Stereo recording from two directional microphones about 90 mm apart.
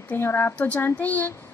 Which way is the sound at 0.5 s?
15° left (ahead or behind).